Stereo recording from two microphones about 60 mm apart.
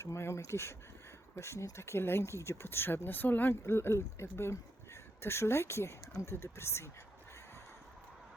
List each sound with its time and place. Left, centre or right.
0.0 s speech: left
3.5 s speech: left